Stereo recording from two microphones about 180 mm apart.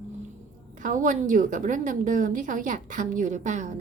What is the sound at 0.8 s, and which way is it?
A woman's voice, 45° right (ahead or behind).